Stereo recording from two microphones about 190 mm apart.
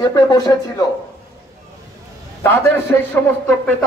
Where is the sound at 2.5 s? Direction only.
10° left (ahead or behind).